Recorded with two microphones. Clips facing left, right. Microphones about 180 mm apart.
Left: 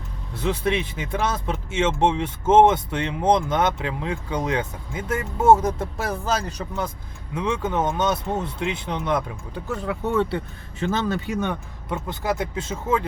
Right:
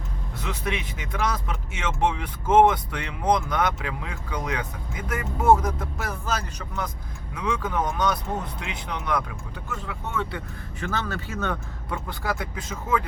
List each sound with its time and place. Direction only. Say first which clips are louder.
0.3 s speech: left 7 dB; 30° left (ahead or behind)
7.3 s speech: left 3 dB; 25° left (ahead or behind)
9.6 s speech: left 9 dB; 40° left (ahead or behind)
10.3 s speech: left 6 dB; 25° left (ahead or behind)